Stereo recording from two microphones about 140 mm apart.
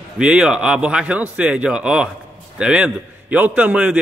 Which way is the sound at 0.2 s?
10° right (ahead or behind).